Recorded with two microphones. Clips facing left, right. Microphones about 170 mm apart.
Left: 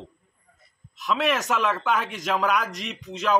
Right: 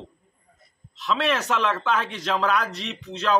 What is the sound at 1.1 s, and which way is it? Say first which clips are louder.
A man's voice: even; 15° left (ahead or behind).